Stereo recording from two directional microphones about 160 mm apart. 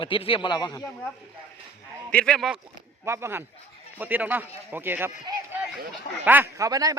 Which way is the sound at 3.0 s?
15° right (ahead or behind).